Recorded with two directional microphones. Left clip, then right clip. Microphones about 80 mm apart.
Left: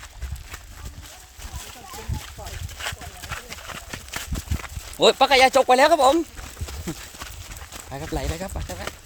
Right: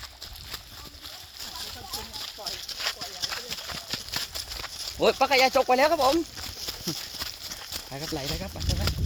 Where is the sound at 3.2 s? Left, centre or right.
Left.